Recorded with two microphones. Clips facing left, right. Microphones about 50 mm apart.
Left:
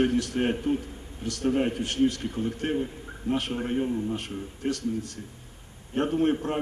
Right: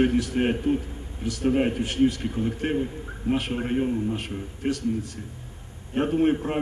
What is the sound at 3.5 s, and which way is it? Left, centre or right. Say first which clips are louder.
Speech: right 2 dB; right.